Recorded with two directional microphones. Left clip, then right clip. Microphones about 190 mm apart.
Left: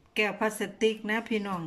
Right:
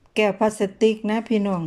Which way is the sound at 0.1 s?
30° right (ahead or behind).